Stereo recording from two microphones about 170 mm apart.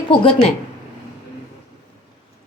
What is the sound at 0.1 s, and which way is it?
Speech, 30° left (ahead or behind).